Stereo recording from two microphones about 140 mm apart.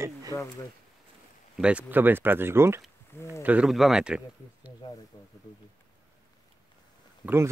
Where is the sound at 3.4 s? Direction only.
5° right (ahead or behind).